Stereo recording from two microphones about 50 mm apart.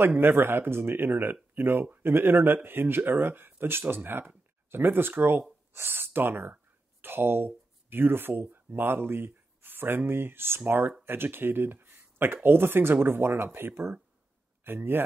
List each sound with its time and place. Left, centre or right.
0.0 s speech: right
10.6 s speech: right